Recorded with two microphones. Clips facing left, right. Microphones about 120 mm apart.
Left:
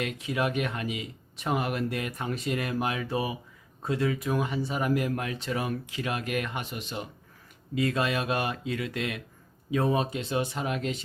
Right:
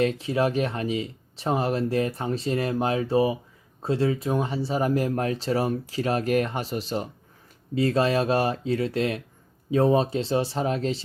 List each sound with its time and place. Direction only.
0.0 s speech: 30° right (ahead or behind)